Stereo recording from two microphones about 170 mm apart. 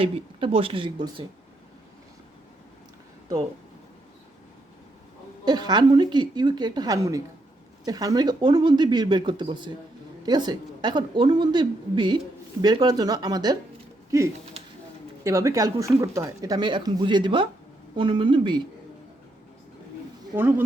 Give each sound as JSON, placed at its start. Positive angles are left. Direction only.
{"t": 0.0, "sound": "speech", "side_deg": -30}
{"t": 5.5, "sound": "speech", "side_deg": -25}
{"t": 20.3, "sound": "speech", "side_deg": -10}